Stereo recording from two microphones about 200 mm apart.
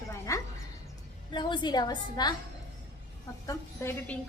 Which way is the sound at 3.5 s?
10° left (ahead or behind).